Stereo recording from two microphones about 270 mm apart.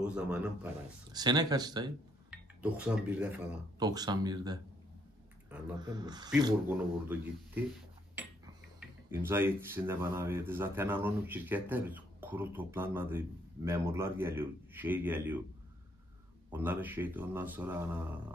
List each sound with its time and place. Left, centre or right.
0.0 s a man's voice: centre
1.1 s speech: centre
5.8 s speech: centre
9.1 s speech: centre
16.4 s speech: centre